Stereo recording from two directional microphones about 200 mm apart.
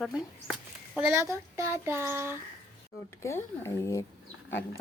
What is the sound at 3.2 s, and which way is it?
Speech, 15° left (ahead or behind).